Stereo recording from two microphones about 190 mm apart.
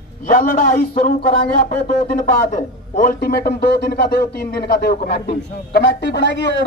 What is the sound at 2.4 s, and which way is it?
A man's voice, 40° left (ahead or behind).